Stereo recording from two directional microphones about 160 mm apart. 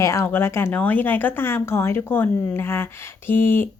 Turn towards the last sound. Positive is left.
turn(degrees=15)  # may be behind; listen again after turning